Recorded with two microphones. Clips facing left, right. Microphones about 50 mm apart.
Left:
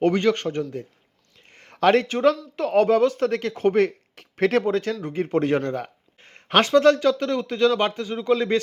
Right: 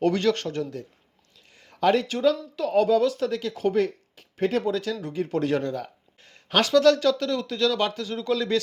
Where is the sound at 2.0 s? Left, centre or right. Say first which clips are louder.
Left 3 dB; left.